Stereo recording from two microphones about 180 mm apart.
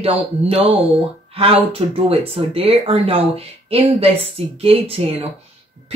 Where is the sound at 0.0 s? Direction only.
35° right (ahead or behind).